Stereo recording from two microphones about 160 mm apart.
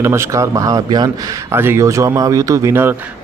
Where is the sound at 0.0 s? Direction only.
15° right (ahead or behind).